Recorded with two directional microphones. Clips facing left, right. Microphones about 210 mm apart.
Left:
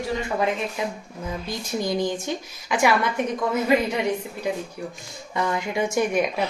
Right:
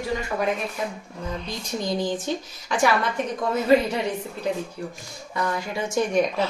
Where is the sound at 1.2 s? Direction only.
5° left (ahead or behind).